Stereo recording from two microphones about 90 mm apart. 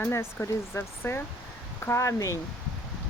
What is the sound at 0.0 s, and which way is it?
Speech, 30° left (ahead or behind).